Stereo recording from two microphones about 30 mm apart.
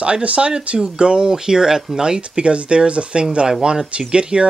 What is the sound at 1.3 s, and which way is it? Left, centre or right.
Speech, right.